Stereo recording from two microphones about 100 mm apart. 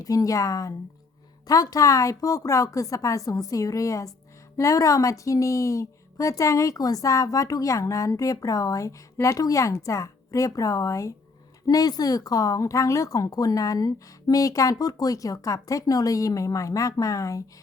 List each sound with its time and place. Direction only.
0.0 s a woman's voice: 35° left (ahead or behind)